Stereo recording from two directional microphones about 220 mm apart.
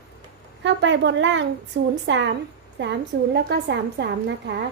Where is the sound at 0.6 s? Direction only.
55° right (ahead or behind).